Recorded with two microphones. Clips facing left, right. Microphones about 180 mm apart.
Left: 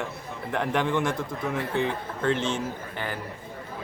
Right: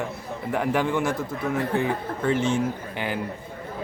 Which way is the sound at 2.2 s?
10° right (ahead or behind).